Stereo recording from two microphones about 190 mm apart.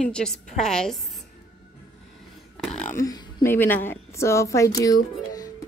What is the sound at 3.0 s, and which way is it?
A woman's voice, 15° left (ahead or behind).